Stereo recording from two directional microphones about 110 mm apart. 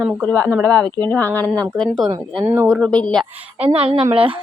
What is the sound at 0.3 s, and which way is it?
Speech, 15° left (ahead or behind).